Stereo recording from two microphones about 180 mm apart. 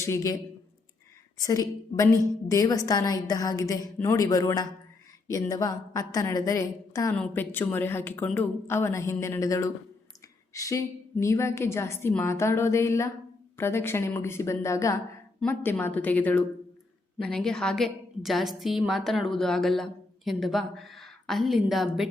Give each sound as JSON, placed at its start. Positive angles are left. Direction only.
{"t": 0.0, "sound": "a woman's voice", "side_deg": 15}
{"t": 1.4, "sound": "a woman's voice", "side_deg": 20}